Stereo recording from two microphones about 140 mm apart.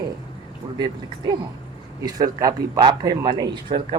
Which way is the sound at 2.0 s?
25° right (ahead or behind).